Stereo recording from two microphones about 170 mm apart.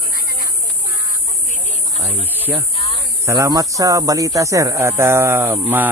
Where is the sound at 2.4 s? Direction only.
10° right (ahead or behind).